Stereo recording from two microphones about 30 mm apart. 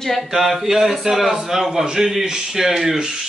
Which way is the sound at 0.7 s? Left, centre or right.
Centre.